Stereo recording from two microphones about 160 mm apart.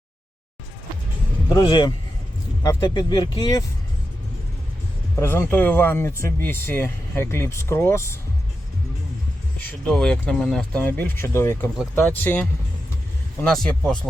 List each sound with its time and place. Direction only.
1.6 s speech: 25° left (ahead or behind)
5.1 s speech: 15° left (ahead or behind)
9.6 s speech: 5° left (ahead or behind)